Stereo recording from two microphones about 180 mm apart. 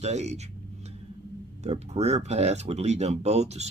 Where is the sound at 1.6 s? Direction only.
35° right (ahead or behind).